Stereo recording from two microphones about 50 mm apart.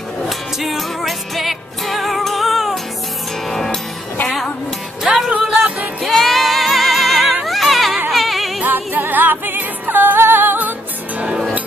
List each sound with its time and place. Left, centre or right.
0.3 s music: centre
5.0 s music: centre
6.0 s music: centre
7.4 s a sound: centre
8.1 s music: centre
8.6 s music: right